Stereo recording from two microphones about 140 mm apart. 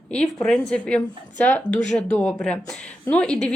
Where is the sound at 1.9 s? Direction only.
10° left (ahead or behind).